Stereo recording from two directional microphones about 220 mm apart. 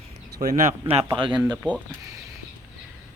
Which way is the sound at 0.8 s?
25° right (ahead or behind).